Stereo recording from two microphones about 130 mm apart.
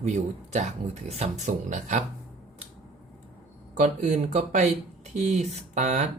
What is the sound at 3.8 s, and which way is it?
Speech, 70° right (ahead or behind).